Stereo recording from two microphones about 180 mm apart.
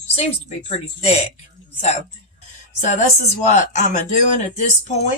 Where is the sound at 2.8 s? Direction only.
40° left (ahead or behind).